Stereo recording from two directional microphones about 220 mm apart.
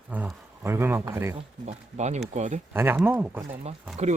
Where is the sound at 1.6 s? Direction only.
30° right (ahead or behind).